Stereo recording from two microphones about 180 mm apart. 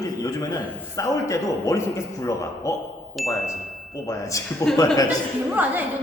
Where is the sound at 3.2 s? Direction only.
Centre (ahead or behind).